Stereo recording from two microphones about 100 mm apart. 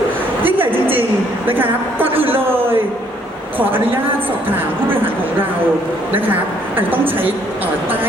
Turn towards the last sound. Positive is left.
turn(degrees=-20)  # may be behind; listen again after turning